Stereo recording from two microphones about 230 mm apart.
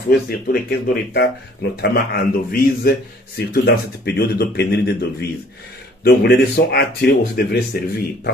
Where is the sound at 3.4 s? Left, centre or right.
Left.